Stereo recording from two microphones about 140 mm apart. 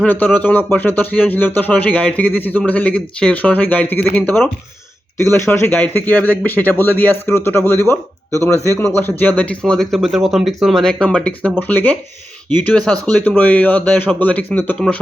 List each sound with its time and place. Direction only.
0.0 s speech: 10° left (ahead or behind)